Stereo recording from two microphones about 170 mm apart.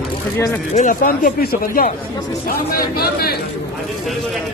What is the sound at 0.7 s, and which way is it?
Speech, 50° left (ahead or behind).